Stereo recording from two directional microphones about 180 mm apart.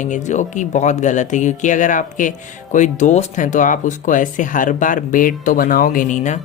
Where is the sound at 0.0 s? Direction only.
40° left (ahead or behind).